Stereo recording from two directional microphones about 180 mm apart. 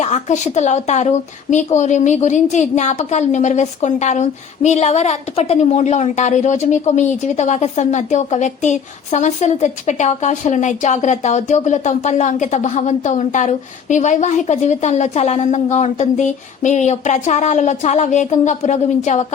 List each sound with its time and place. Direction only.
0.0 s a woman's voice: 40° left (ahead or behind)